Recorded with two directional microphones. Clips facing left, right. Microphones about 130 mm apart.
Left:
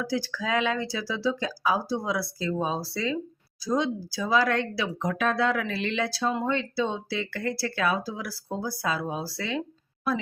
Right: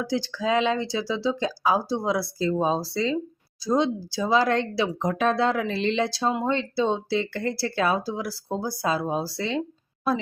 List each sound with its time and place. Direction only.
0.0 s speech: 25° right (ahead or behind)